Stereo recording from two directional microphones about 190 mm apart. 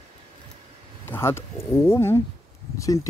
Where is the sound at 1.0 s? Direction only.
10° left (ahead or behind).